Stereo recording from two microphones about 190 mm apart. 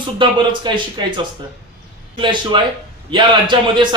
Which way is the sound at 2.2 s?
25° right (ahead or behind).